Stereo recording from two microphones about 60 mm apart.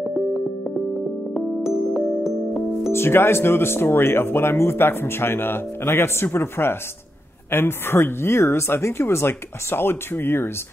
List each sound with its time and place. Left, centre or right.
0.1 s music: centre
2.9 s speech: left